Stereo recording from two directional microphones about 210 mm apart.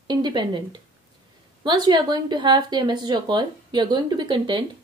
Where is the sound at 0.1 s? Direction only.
20° right (ahead or behind).